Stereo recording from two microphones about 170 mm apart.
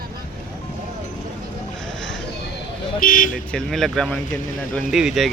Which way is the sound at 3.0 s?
55° left (ahead or behind).